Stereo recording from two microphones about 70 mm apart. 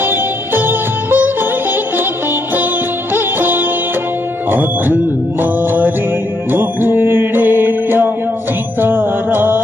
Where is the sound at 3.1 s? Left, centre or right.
Right.